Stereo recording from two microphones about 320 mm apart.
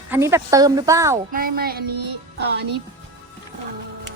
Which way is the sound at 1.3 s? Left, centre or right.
Right.